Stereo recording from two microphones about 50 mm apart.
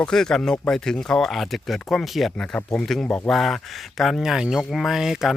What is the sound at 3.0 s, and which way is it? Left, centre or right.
Speech, left.